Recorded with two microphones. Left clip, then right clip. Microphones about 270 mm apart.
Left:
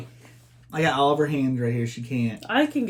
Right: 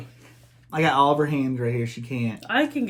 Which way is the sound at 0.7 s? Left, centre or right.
Centre.